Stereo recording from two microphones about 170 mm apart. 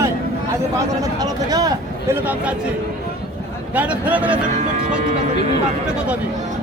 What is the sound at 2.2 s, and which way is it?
Speech, 5° right (ahead or behind).